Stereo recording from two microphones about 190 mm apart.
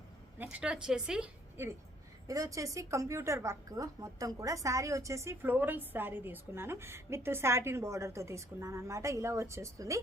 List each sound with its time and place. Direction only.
0.3 s a woman's voice: 5° right (ahead or behind)